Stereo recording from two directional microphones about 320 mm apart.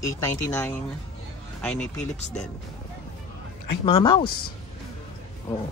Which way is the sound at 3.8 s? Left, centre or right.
Centre.